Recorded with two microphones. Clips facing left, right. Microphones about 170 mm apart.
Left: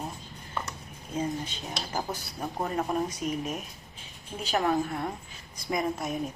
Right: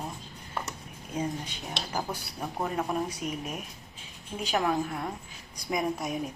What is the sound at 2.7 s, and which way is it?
Speech, 5° left (ahead or behind).